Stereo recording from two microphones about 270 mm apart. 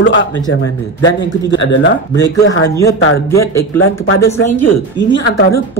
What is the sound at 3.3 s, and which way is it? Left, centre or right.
Speech, centre.